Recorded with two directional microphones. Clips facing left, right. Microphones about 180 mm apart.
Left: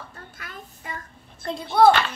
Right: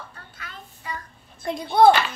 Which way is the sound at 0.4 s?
50° left (ahead or behind).